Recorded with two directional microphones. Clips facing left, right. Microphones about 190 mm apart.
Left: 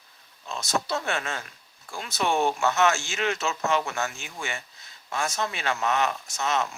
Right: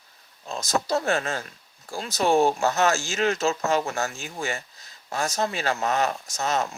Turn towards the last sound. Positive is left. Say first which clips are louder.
# right 1 dB
turn(degrees=-40)  # may be behind; listen again after turning